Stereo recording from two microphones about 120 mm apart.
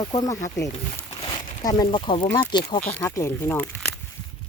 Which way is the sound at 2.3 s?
35° left (ahead or behind).